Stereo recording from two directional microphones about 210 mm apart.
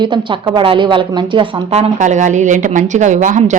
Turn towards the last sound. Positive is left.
turn(degrees=-35)  # may be behind; listen again after turning